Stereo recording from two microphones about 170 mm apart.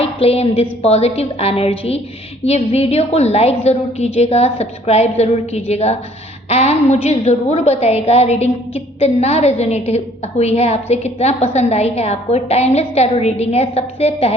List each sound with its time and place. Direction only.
0.0 s a woman's voice: 35° left (ahead or behind)